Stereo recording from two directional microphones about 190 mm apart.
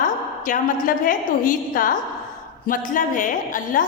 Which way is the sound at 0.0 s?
45° left (ahead or behind).